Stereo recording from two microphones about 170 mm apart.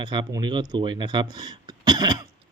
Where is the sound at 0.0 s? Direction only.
25° right (ahead or behind).